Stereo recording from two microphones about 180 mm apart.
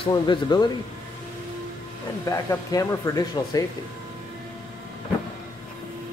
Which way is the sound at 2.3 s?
15° left (ahead or behind).